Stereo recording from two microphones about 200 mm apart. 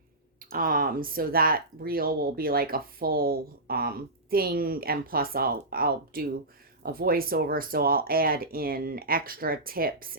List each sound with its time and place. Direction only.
0.3 s speech: 45° right (ahead or behind)